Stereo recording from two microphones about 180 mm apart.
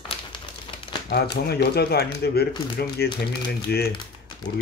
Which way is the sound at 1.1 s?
65° left (ahead or behind).